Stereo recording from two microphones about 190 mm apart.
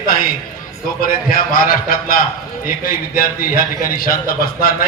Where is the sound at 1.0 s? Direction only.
50° left (ahead or behind).